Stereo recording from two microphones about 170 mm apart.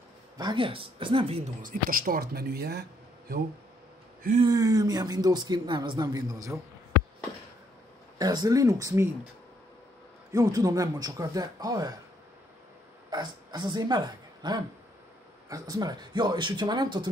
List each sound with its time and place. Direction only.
0.4 s speech: 30° right (ahead or behind)
1.6 s speech: 55° right (ahead or behind)
4.4 s speech: 20° right (ahead or behind)
8.2 s speech: 25° right (ahead or behind)
10.3 s speech: 20° right (ahead or behind)
13.1 s speech: 25° right (ahead or behind)